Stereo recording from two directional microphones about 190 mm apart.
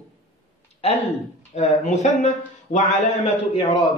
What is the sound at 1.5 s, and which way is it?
A man's voice, 35° left (ahead or behind).